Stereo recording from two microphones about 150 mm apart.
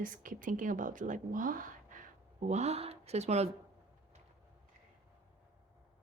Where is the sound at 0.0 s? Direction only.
65° right (ahead or behind).